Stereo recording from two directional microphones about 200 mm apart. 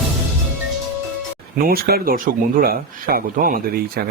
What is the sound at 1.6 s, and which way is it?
Speech, 50° right (ahead or behind).